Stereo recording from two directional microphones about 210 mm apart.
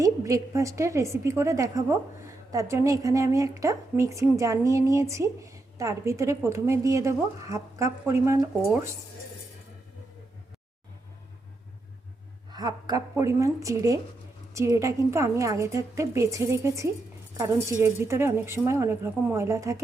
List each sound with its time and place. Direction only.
0.0 s a woman's voice: 15° right (ahead or behind)
12.5 s a woman's voice: 20° right (ahead or behind)